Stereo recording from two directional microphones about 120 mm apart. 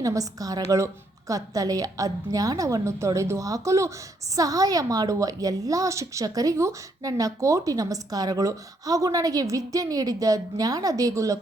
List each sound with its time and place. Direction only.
0.0 s a woman's voice: 30° right (ahead or behind)